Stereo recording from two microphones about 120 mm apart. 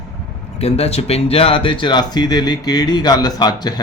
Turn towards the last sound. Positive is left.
turn(degrees=35)  # may be behind; listen again after turning